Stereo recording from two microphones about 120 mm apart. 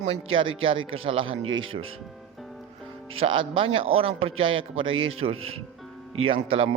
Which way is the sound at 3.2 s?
45° right (ahead or behind).